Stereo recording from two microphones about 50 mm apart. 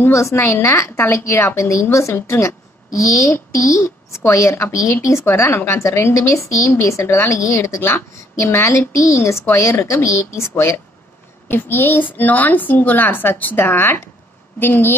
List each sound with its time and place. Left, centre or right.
0.1 s a woman's voice: left
0.7 s a woman's voice: left
2.1 s a woman's voice: left
6.7 s a woman's voice: left
8.4 s a woman's voice: left
10.0 s a woman's voice: left
11.4 s a woman's voice: left